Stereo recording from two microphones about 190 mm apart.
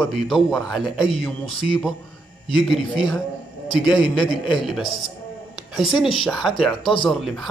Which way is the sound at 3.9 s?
25° left (ahead or behind).